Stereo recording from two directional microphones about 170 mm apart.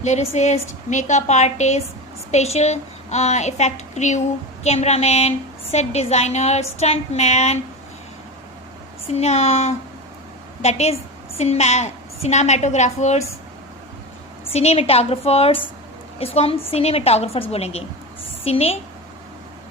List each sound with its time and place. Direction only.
0.0 s a woman's voice: 40° left (ahead or behind)
9.0 s a woman's voice: 40° left (ahead or behind)
14.5 s a woman's voice: 35° left (ahead or behind)